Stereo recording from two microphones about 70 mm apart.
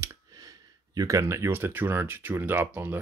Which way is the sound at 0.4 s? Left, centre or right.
Right.